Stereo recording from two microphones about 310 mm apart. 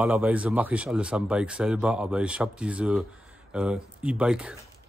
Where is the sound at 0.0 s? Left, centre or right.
Centre.